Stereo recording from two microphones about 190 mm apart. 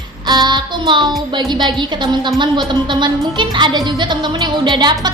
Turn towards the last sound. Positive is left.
turn(degrees=-20)  # may be behind; listen again after turning